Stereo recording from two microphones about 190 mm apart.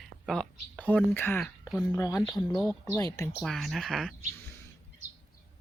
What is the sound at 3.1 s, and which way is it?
Speech, 15° left (ahead or behind).